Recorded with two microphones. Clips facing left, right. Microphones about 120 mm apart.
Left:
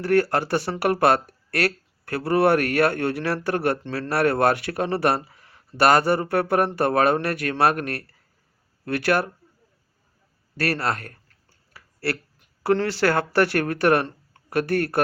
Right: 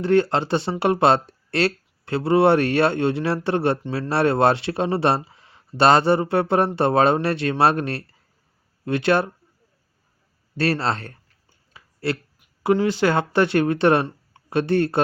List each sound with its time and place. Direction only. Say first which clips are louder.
0.0 s speech: right 2 dB; 20° right (ahead or behind)
3.8 s speech: right 2 dB; 15° right (ahead or behind)
4.1 s speech: right 2 dB; 25° right (ahead or behind)
10.6 s a sound: right 3 dB; 25° right (ahead or behind)
12.6 s speech: right 2 dB; 15° right (ahead or behind)